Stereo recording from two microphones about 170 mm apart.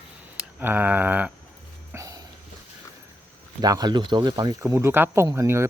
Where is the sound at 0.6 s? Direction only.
10° right (ahead or behind).